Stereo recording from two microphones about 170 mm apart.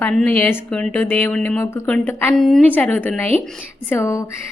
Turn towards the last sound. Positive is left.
turn(degrees=15)  # may be behind; listen again after turning